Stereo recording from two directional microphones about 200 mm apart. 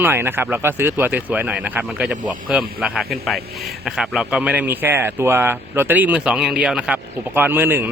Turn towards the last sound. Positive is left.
turn(degrees=-10)  # may be behind; listen again after turning